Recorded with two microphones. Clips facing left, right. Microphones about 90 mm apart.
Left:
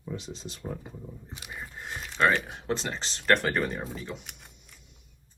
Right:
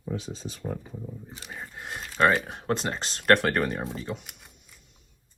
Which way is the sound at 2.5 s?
45° right (ahead or behind).